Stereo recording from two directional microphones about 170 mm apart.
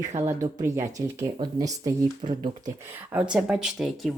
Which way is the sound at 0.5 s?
15° right (ahead or behind).